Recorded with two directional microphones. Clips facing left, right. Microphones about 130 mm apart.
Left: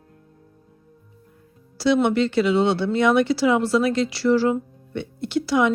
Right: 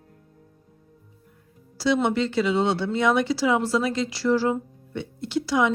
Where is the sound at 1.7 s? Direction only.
65° left (ahead or behind).